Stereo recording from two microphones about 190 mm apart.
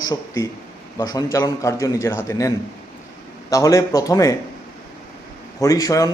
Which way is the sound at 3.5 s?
15° left (ahead or behind).